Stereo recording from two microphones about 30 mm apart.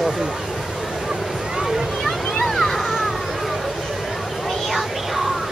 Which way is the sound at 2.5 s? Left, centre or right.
Centre.